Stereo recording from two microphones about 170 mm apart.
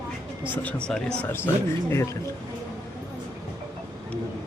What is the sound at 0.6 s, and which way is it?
Speech, 5° left (ahead or behind).